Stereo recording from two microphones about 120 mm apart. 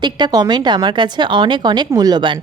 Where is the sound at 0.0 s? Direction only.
35° right (ahead or behind).